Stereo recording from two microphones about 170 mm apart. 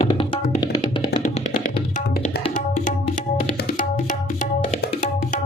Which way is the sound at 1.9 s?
50° left (ahead or behind).